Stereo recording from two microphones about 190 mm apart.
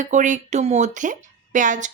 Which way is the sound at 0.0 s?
40° right (ahead or behind).